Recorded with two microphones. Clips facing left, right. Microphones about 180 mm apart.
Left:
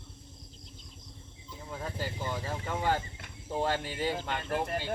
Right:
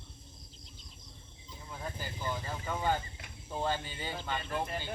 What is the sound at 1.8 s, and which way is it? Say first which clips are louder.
Speech: left 3 dB; 75° left (ahead or behind).